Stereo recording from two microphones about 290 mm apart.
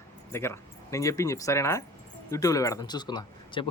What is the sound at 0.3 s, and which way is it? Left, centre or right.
Speech, centre.